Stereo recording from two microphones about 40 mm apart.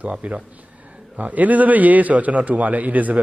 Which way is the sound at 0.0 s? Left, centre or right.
Right.